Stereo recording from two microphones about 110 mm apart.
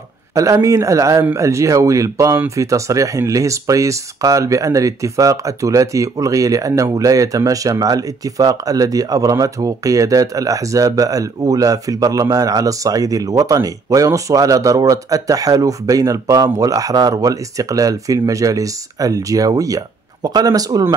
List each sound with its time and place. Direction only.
0.3 s speech: 30° right (ahead or behind)